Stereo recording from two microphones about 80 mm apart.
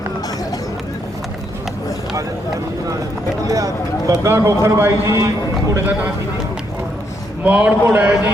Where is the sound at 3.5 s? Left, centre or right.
Right.